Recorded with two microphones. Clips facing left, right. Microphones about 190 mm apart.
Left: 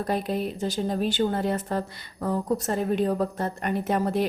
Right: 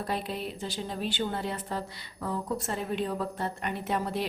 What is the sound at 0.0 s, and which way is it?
Speech, 45° left (ahead or behind).